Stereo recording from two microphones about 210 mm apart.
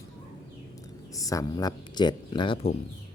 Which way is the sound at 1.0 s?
15° left (ahead or behind).